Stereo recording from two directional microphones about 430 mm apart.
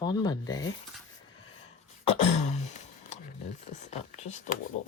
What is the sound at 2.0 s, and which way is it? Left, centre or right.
Throat clearing, centre.